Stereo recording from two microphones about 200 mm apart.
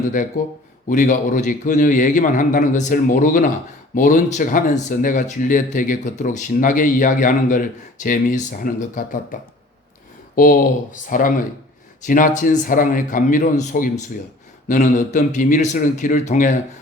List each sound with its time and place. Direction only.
0.9 s a man's voice: 40° left (ahead or behind)